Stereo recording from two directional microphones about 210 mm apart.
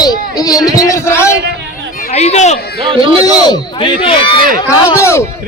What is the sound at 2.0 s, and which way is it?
Speech, 30° left (ahead or behind).